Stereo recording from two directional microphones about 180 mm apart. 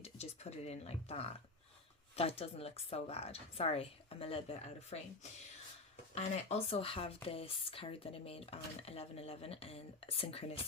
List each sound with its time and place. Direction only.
0.0 s a sound: 35° left (ahead or behind)
2.1 s speech: 35° left (ahead or behind)
6.1 s speech: 35° left (ahead or behind)